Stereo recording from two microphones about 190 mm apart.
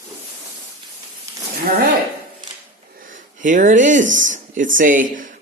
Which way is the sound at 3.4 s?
40° right (ahead or behind).